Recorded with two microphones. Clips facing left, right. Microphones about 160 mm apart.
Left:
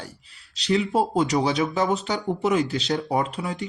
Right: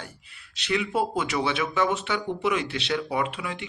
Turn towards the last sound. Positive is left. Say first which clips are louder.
# left 3 dB
turn(degrees=40)  # may be behind; listen again after turning